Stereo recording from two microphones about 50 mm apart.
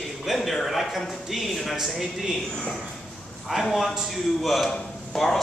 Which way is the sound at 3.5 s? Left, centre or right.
Centre.